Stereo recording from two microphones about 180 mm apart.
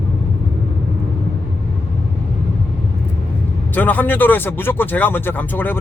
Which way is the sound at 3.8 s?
10° left (ahead or behind).